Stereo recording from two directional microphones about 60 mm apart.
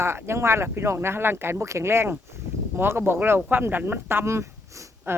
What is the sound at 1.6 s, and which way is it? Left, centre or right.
Speech, right.